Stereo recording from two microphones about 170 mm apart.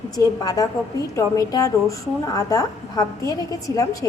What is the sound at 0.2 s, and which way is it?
A woman's voice, 20° left (ahead or behind).